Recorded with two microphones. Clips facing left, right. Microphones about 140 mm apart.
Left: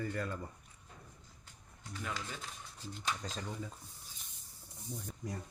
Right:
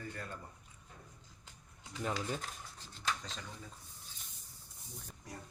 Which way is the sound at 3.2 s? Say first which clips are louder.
Left 5 dB; 40° left (ahead or behind).